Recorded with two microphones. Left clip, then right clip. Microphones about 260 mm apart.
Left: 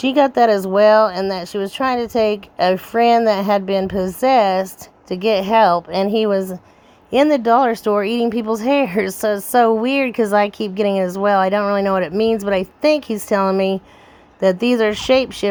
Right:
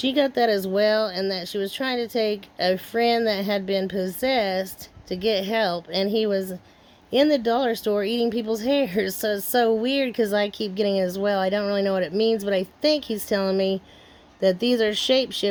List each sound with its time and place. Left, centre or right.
0.0 s speech: centre